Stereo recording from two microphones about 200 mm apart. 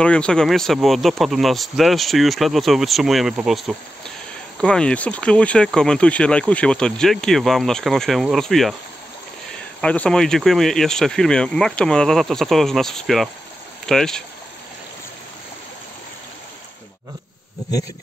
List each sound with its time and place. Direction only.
0.0 s speech: 5° left (ahead or behind)
9.8 s speech: 5° left (ahead or behind)